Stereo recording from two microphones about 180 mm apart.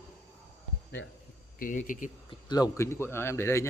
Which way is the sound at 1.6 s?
45° left (ahead or behind).